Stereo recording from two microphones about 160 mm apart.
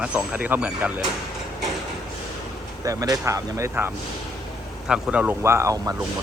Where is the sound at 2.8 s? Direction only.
20° right (ahead or behind).